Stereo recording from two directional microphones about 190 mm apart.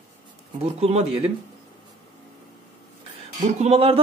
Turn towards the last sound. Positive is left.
turn(degrees=-30)  # may be behind; listen again after turning